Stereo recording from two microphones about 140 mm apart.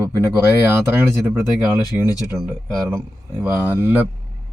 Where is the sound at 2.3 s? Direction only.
Centre (ahead or behind).